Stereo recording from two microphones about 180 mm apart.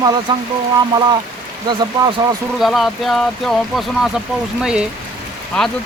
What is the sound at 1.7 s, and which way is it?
Speech, 25° right (ahead or behind).